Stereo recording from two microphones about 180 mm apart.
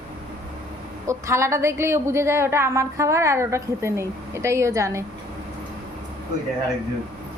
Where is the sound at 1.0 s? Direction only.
15° right (ahead or behind).